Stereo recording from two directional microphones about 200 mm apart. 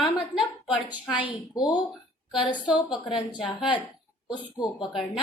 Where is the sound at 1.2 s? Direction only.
20° left (ahead or behind).